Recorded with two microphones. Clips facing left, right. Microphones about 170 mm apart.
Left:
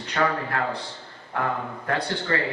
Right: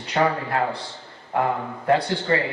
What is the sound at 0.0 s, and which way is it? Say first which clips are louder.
Speech: right 3 dB; 15° right (ahead or behind).